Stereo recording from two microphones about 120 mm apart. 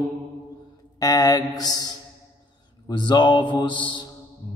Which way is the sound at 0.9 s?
30° left (ahead or behind).